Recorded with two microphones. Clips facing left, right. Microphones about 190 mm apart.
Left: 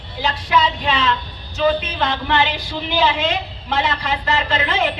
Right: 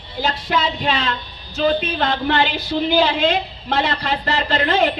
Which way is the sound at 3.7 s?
40° right (ahead or behind).